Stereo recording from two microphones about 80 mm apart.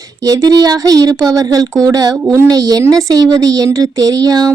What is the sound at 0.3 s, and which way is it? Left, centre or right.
Speech, right.